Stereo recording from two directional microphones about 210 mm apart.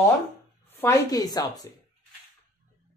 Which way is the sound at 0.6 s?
10° left (ahead or behind).